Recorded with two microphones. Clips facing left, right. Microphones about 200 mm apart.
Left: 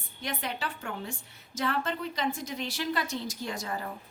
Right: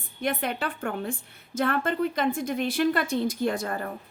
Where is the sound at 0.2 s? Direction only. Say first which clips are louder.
Right 7 dB; 55° right (ahead or behind).